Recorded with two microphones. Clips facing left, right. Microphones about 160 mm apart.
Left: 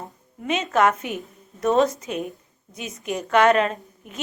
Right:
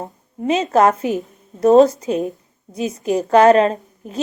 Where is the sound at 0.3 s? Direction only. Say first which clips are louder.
Right 6 dB; 35° right (ahead or behind).